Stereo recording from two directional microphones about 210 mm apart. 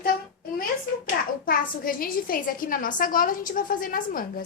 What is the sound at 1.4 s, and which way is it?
A woman's voice, 45° left (ahead or behind).